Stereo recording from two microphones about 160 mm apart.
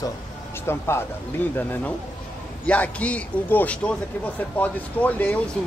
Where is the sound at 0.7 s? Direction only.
15° left (ahead or behind).